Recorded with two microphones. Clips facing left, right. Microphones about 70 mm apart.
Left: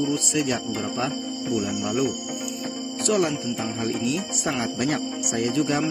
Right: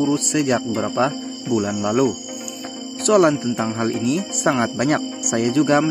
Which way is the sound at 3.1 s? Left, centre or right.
Right.